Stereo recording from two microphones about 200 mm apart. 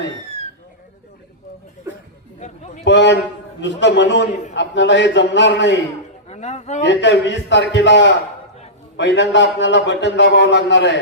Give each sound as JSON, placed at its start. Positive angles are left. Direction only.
{"t": 2.4, "sound": "a sound", "side_deg": 40}
{"t": 2.8, "sound": "a man's voice", "side_deg": 60}
{"t": 6.2, "sound": "a man's voice", "side_deg": 35}
{"t": 6.8, "sound": "a man's voice", "side_deg": 60}